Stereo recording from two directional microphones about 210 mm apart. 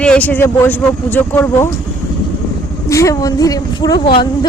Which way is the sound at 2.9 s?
15° left (ahead or behind).